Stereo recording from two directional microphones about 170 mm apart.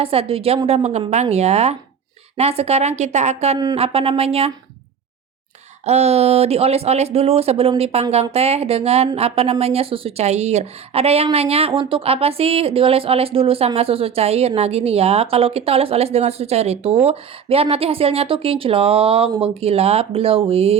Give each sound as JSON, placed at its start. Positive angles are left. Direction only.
{"t": 0.0, "sound": "speech", "side_deg": -35}
{"t": 5.8, "sound": "speech", "side_deg": -40}